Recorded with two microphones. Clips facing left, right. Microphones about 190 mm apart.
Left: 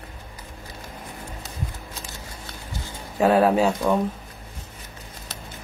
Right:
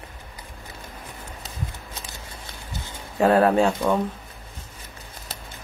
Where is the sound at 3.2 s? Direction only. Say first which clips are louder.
Even; 5° left (ahead or behind).